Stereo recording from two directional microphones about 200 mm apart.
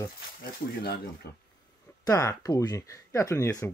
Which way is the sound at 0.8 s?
50° left (ahead or behind).